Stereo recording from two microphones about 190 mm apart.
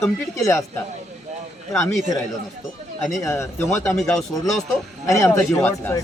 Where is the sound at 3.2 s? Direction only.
15° left (ahead or behind).